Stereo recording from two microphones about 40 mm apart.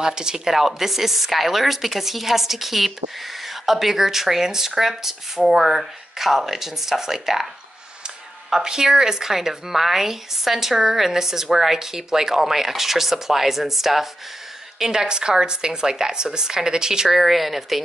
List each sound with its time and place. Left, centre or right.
0.0 s a woman's voice: centre
8.5 s speech: centre
17.2 s a woman's voice: centre